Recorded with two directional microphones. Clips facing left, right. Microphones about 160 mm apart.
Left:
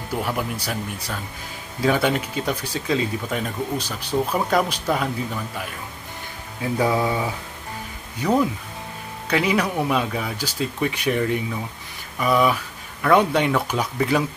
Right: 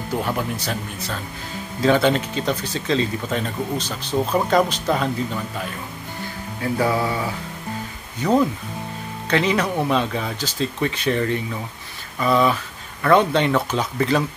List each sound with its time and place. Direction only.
0.2 s speech: 5° left (ahead or behind)
6.6 s speech: 15° left (ahead or behind)